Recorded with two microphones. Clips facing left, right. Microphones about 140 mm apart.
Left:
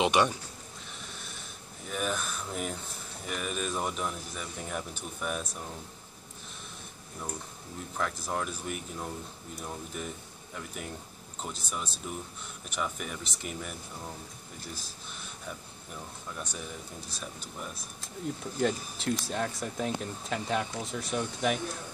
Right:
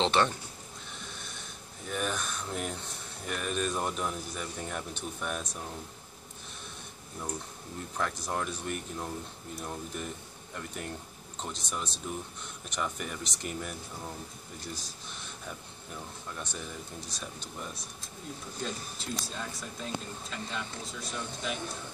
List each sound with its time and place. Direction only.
0.0 s speech: 10° left (ahead or behind)
1.9 s speech: 5° left (ahead or behind)
8.0 s speech: centre (ahead or behind)
18.6 s speech: 70° left (ahead or behind)